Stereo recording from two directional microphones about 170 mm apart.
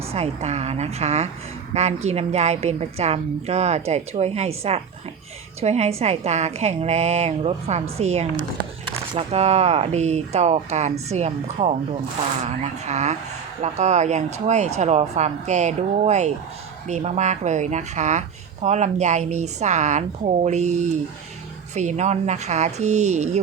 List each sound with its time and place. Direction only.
0.1 s a woman's voice: 40° right (ahead or behind)